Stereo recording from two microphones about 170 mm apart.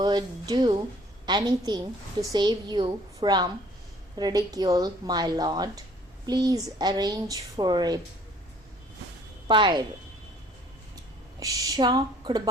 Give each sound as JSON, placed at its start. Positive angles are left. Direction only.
{"t": 0.0, "sound": "a woman's voice", "side_deg": -25}
{"t": 9.5, "sound": "a woman's voice", "side_deg": -30}
{"t": 11.3, "sound": "speech", "side_deg": -20}